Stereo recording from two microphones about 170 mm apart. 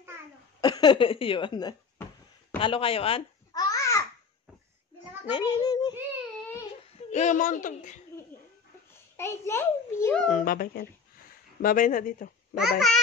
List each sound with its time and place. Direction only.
0.6 s speech: 25° left (ahead or behind)
3.7 s babbling: 20° left (ahead or behind)
5.3 s a child's voice: 20° left (ahead or behind)
7.1 s speech: 45° left (ahead or behind)
9.1 s a child's voice: 15° left (ahead or behind)
10.3 s speech: 55° left (ahead or behind)
12.5 s a child's voice: 5° right (ahead or behind)